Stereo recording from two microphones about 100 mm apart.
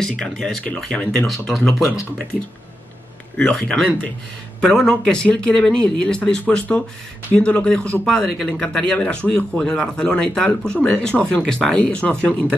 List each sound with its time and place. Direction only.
0.0 s speech: 5° left (ahead or behind)
3.3 s speech: 10° left (ahead or behind)